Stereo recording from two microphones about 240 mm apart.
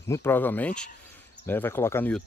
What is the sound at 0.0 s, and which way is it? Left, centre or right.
Speech, centre.